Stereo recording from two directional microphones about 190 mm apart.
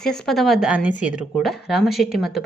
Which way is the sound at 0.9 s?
40° left (ahead or behind).